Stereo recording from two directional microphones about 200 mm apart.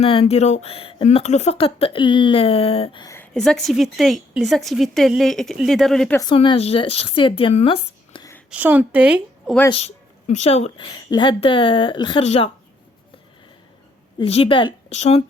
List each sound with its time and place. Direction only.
0.0 s speech: 30° left (ahead or behind)
3.3 s a woman's voice: 5° left (ahead or behind)
6.1 s speech: 25° left (ahead or behind)
8.4 s a woman's voice: 10° right (ahead or behind)
9.6 s speech: 30° left (ahead or behind)
14.2 s a woman's voice: 30° left (ahead or behind)